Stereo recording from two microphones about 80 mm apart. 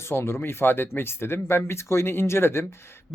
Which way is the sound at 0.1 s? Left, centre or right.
Left.